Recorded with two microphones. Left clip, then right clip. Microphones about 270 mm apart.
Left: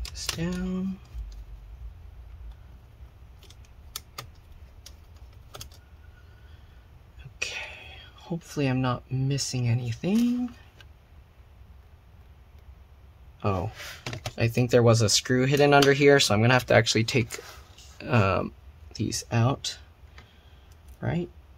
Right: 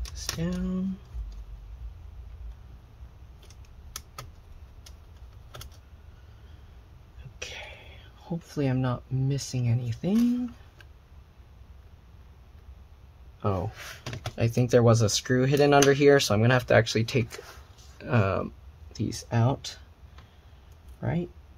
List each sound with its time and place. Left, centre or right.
0.1 s a sound: centre
7.3 s speech: centre
13.4 s speech: centre
21.0 s speech: centre